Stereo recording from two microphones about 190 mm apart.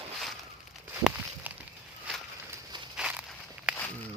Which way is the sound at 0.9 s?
10° right (ahead or behind).